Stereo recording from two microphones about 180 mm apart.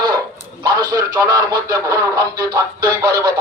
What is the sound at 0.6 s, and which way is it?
Radio, 20° right (ahead or behind).